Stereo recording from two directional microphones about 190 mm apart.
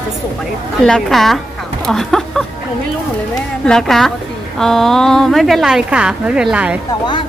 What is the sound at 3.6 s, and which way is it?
A woman's voice, centre (ahead or behind).